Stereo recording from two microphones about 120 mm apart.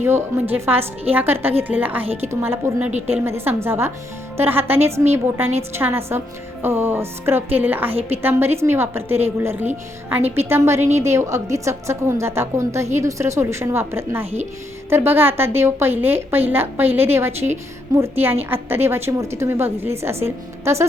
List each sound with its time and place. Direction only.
0.0 s a woman's voice: 20° right (ahead or behind)